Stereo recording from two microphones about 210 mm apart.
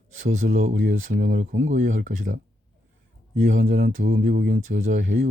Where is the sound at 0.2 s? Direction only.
40° right (ahead or behind).